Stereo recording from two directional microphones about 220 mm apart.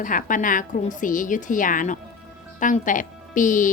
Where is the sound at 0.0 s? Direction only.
35° left (ahead or behind).